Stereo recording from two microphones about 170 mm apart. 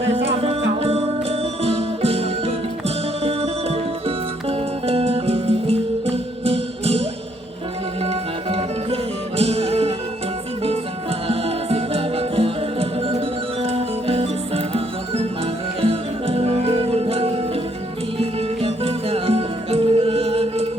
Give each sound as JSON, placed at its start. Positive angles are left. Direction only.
{"t": 0.8, "sound": "music", "side_deg": -35}
{"t": 11.3, "sound": "music", "side_deg": -35}